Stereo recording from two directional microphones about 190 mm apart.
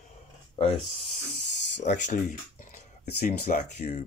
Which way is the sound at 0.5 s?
30° left (ahead or behind).